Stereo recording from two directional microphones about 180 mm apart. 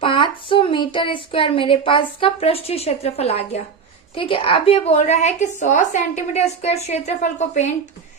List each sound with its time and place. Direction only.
0.0 s a woman's voice: 30° left (ahead or behind)